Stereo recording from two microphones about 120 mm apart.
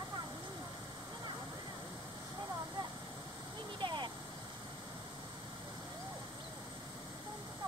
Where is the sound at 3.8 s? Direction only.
40° right (ahead or behind).